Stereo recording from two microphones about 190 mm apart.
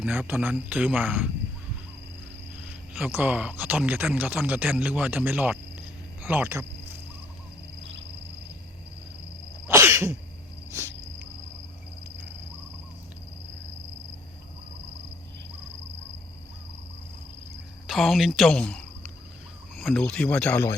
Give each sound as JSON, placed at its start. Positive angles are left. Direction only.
{"t": 0.0, "sound": "speech", "side_deg": -10}
{"t": 2.6, "sound": "speech", "side_deg": -10}
{"t": 6.2, "sound": "a sound", "side_deg": -10}
{"t": 9.6, "sound": "sneeze", "side_deg": -15}
{"t": 10.7, "sound": "cricket", "side_deg": -15}
{"t": 17.8, "sound": "speech", "side_deg": 0}